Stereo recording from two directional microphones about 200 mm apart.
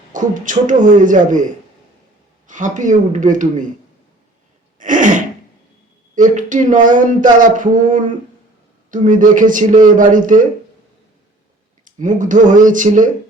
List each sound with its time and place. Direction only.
0.1 s speech: 40° right (ahead or behind)
2.5 s speech: 40° right (ahead or behind)
4.8 s throat clearing: 40° right (ahead or behind)
6.1 s speech: 40° right (ahead or behind)
11.9 s speech: 40° right (ahead or behind)